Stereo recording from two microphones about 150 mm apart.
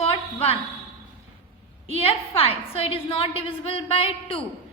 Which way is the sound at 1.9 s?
40° left (ahead or behind).